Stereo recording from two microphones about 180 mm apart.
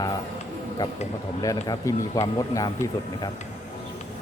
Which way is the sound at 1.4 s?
20° left (ahead or behind).